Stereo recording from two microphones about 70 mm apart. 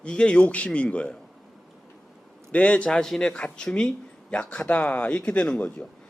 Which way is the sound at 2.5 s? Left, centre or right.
Centre.